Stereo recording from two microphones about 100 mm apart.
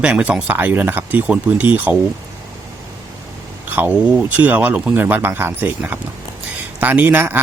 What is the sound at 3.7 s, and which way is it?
A man's voice, 20° right (ahead or behind).